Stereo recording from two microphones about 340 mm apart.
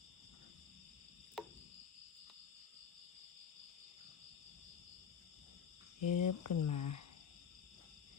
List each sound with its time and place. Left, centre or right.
6.0 s speech: left